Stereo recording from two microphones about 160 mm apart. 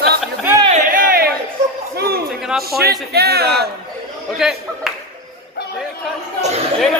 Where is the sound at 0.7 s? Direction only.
55° right (ahead or behind).